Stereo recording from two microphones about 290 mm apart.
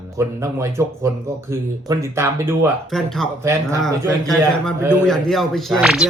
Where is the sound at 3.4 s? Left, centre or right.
Centre.